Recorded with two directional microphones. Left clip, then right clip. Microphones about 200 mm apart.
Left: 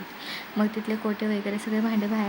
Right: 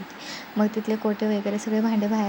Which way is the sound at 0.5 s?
5° right (ahead or behind).